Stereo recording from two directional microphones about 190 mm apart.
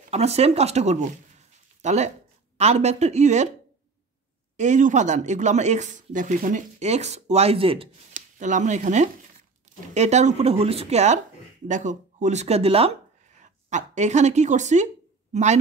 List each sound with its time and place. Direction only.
0.1 s speech: 35° right (ahead or behind)
4.6 s speech: 40° right (ahead or behind)